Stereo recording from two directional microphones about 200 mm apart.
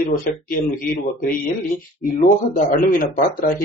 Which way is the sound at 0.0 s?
45° left (ahead or behind).